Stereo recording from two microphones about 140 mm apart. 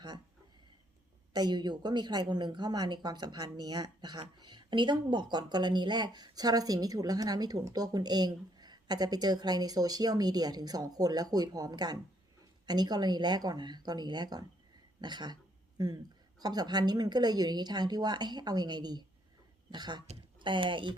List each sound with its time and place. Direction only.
1.3 s a woman's voice: 30° right (ahead or behind)
16.4 s speech: 30° right (ahead or behind)